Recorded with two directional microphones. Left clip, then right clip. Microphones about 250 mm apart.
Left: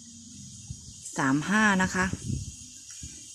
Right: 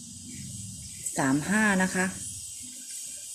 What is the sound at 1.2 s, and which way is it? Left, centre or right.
Speech, centre.